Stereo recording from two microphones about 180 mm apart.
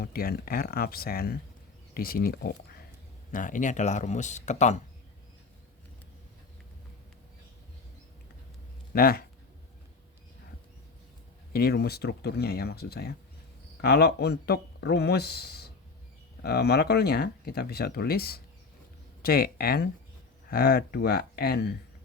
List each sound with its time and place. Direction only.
0.0 s speech: 55° left (ahead or behind)
3.3 s speech: 45° left (ahead or behind)
8.9 s speech: 60° left (ahead or behind)
11.5 s speech: 60° left (ahead or behind)